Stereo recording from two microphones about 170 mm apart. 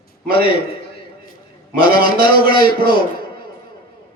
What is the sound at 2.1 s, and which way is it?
Speech, 60° right (ahead or behind).